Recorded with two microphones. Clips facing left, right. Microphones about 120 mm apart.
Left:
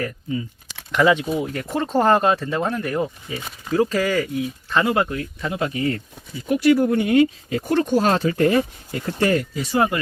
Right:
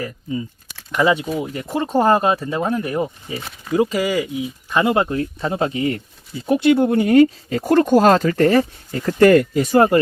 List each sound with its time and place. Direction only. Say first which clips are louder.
0.9 s speech: even; 10° right (ahead or behind)
3.3 s speech: right 2 dB; 30° right (ahead or behind)
3.7 s speech: right 1 dB; 10° right (ahead or behind)
7.0 s speech: right 4 dB; 45° right (ahead or behind)